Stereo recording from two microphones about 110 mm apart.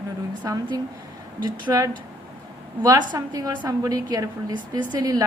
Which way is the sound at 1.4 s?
45° right (ahead or behind).